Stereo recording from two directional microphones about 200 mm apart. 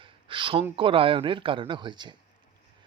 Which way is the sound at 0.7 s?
25° right (ahead or behind).